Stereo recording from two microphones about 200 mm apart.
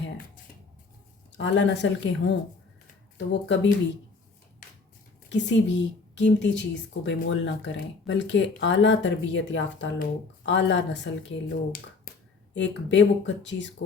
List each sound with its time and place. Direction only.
1.3 s speech: 65° left (ahead or behind)
5.3 s speech: 65° left (ahead or behind)